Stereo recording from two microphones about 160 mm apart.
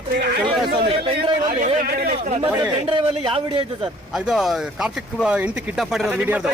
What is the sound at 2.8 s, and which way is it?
Speech, 35° right (ahead or behind).